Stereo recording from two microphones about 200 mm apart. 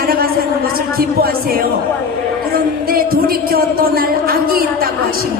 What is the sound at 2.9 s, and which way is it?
Music, 50° right (ahead or behind).